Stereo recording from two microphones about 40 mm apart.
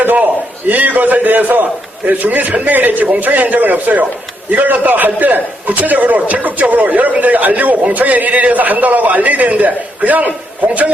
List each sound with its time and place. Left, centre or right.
0.7 s a man's voice: right
4.5 s a man's voice: right